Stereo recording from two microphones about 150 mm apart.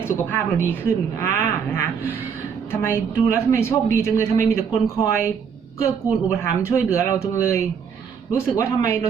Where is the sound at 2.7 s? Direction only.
15° left (ahead or behind).